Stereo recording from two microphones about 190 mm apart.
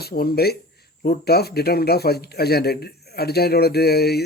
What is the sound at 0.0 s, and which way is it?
Speech, 55° left (ahead or behind).